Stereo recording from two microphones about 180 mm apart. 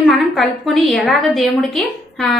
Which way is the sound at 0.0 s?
Centre (ahead or behind).